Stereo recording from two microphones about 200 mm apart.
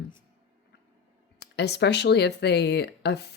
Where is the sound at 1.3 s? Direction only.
55° left (ahead or behind).